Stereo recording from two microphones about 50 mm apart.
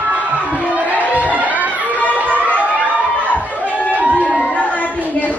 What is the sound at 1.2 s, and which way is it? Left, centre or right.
Music, right.